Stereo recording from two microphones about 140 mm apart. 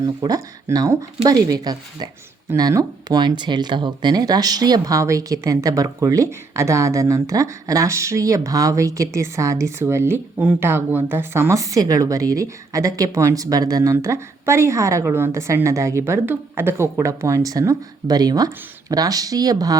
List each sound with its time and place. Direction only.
0.0 s speech: 25° right (ahead or behind)